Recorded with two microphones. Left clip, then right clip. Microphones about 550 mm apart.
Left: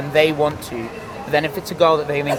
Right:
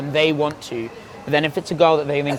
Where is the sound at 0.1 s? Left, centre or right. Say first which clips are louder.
Left 2 dB; right.